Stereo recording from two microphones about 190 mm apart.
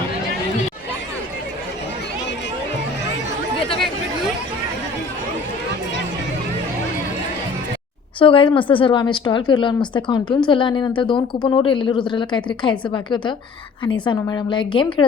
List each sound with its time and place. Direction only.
8.2 s a woman's voice: 25° left (ahead or behind)